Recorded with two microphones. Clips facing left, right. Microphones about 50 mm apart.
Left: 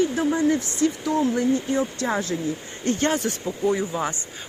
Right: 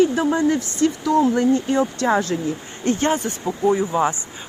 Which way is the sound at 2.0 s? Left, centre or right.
Right.